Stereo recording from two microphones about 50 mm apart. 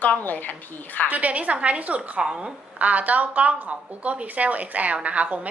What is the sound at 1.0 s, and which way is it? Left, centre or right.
A woman's voice, right.